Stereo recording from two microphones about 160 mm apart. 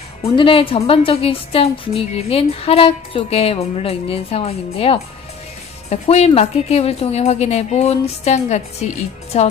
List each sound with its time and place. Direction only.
0.2 s a woman's voice: 35° left (ahead or behind)